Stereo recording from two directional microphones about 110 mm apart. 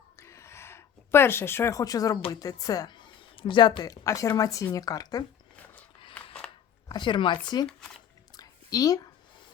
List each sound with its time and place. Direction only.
0.2 s a sound: 25° left (ahead or behind)
2.3 s speech: 35° left (ahead or behind)
6.1 s scissors: 10° left (ahead or behind)
6.8 s chopping: 45° left (ahead or behind)
7.4 s speech: 40° left (ahead or behind)
7.7 s squish: 5° left (ahead or behind)
8.4 s a sound: 35° left (ahead or behind)